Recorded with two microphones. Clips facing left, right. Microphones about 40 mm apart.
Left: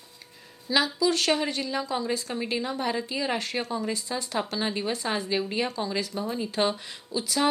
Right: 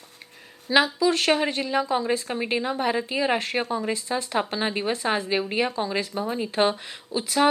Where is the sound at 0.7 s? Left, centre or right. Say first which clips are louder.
Right 4 dB; right.